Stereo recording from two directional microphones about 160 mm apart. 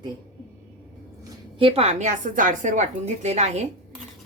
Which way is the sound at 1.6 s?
35° right (ahead or behind).